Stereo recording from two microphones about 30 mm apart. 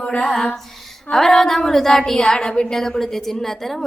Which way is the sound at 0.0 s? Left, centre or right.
Left.